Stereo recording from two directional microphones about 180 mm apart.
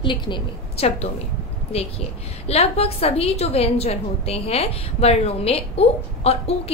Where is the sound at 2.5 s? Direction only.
35° left (ahead or behind).